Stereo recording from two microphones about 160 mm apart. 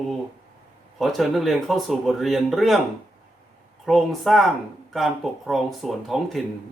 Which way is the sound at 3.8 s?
Centre (ahead or behind).